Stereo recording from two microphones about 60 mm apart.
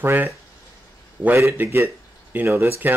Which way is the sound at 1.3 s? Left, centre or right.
Right.